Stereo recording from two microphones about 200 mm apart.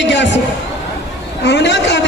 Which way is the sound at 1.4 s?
60° left (ahead or behind).